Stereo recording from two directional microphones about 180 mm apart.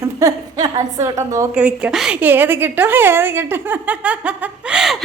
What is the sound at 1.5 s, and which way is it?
A woman's voice, 5° right (ahead or behind).